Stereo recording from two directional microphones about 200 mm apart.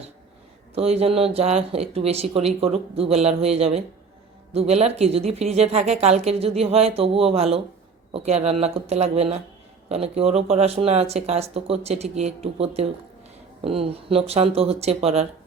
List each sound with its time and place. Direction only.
0.8 s speech: 30° right (ahead or behind)